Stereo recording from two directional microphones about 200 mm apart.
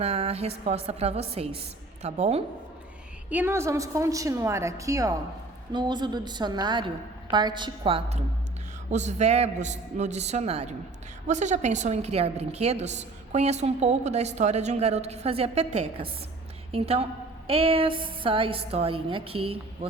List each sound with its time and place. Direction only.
0.0 s a woman's voice: 30° right (ahead or behind)
3.2 s a woman's voice: 10° right (ahead or behind); by 19.9 s 30° right (ahead or behind)